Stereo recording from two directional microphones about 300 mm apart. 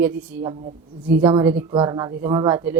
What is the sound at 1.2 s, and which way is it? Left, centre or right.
A woman's voice, centre.